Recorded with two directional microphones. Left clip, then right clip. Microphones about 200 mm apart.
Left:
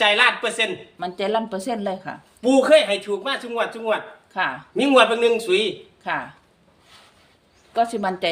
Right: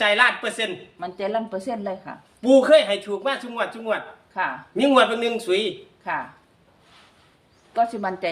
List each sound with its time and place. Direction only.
0.0 s a man's voice: 5° right (ahead or behind)
0.9 s speech: 50° left (ahead or behind)
2.4 s a man's voice: 5° right (ahead or behind)
4.4 s speech: 45° left (ahead or behind)
4.7 s a man's voice: 5° right (ahead or behind)
6.0 s speech: 45° left (ahead or behind)
7.8 s speech: 45° left (ahead or behind)